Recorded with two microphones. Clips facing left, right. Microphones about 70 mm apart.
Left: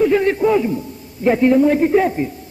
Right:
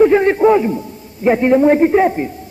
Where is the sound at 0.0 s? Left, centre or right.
Right.